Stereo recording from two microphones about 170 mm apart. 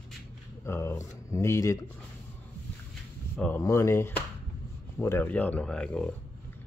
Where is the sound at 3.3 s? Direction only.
10° left (ahead or behind).